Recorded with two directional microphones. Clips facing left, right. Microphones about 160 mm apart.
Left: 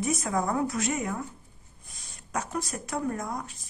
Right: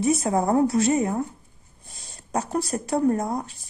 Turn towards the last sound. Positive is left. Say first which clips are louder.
# right 9 dB
turn(degrees=-30)  # may be behind; listen again after turning